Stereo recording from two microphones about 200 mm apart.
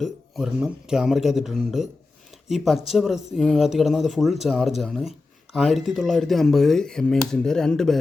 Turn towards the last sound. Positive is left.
turn(degrees=0)  # may be behind; listen again after turning